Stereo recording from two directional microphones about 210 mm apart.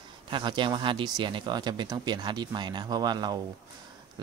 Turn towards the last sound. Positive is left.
turn(degrees=-20)  # may be behind; listen again after turning